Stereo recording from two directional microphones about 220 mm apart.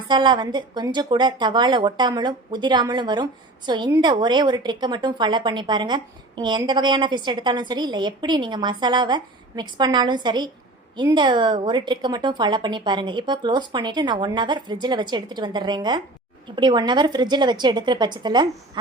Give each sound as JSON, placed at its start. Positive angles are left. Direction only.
{"t": 0.1, "sound": "a woman's voice", "side_deg": -20}